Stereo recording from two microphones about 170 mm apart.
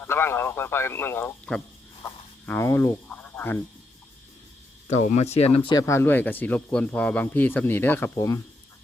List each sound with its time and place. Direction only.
0.0 s speech: 15° left (ahead or behind)
4.9 s speech: 40° left (ahead or behind)
5.7 s speech: 15° left (ahead or behind)